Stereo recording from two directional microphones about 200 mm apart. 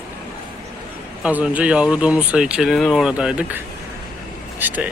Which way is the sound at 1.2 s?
5° right (ahead or behind).